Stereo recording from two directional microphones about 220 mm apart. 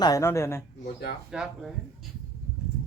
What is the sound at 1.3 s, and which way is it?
Speech, 5° right (ahead or behind).